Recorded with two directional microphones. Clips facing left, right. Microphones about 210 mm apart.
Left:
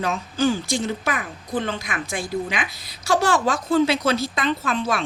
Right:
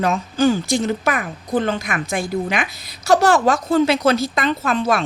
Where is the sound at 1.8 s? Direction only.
60° right (ahead or behind).